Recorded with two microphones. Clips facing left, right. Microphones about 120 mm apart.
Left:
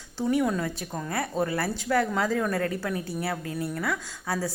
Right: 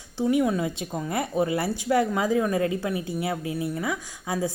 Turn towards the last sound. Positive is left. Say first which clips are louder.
# right 2 dB
turn(degrees=-15)  # may be behind; listen again after turning